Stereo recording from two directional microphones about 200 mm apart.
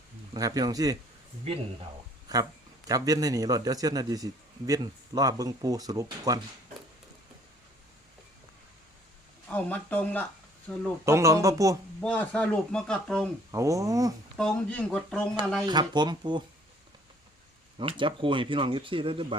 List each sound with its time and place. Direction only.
0.3 s a man's voice: 20° right (ahead or behind)
2.3 s a man's voice: 20° right (ahead or behind)
9.5 s speech: 10° left (ahead or behind)
11.0 s a man's voice: 15° right (ahead or behind)
11.9 s speech: 5° left (ahead or behind)
13.5 s a man's voice: 15° right (ahead or behind)
14.3 s speech: 5° left (ahead or behind)
15.6 s speech: 20° right (ahead or behind)
17.7 s speech: 25° right (ahead or behind)